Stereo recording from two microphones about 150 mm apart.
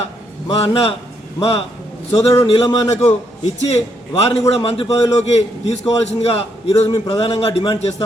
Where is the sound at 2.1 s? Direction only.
20° left (ahead or behind).